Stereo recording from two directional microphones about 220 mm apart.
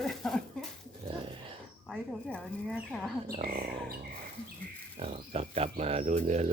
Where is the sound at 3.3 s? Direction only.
40° right (ahead or behind).